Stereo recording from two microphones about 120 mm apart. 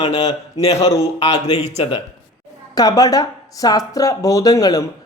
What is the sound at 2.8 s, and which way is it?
Speech, 30° left (ahead or behind).